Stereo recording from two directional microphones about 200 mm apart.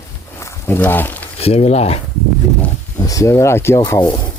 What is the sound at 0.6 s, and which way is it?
Speech, 10° left (ahead or behind).